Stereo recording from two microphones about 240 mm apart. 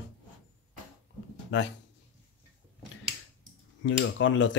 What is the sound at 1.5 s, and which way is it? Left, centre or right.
Speech, left.